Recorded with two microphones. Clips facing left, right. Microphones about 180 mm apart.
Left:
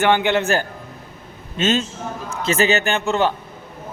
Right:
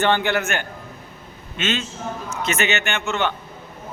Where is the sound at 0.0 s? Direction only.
15° left (ahead or behind).